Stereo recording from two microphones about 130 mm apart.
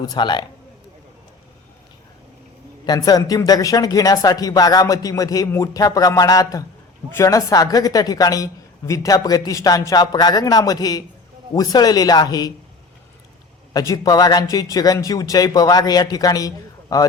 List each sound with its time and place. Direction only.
0.0 s speech: 35° left (ahead or behind)
2.8 s speech: 30° left (ahead or behind)
13.7 s speech: 30° left (ahead or behind)